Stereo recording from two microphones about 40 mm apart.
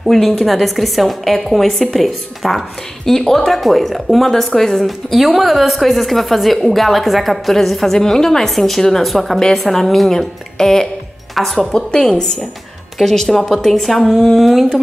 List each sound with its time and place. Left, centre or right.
0.0 s a woman's voice: centre
4.8 s a woman's voice: centre
11.3 s a woman's voice: centre
11.7 s a woman's voice: centre